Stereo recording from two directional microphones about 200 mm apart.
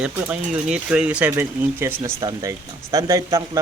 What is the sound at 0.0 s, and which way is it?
Speech, 5° right (ahead or behind).